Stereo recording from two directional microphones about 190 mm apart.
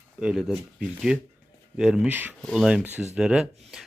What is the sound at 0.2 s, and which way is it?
Speech, 5° right (ahead or behind).